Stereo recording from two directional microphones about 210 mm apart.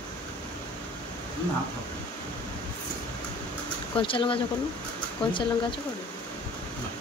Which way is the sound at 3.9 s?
25° left (ahead or behind).